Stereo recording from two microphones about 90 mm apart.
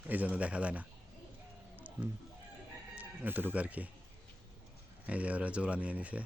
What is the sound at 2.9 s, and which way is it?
Speech, 20° right (ahead or behind).